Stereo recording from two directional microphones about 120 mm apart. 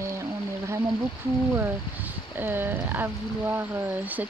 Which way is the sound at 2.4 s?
15° right (ahead or behind).